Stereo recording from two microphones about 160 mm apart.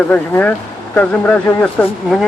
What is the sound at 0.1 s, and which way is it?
Speech, 10° left (ahead or behind).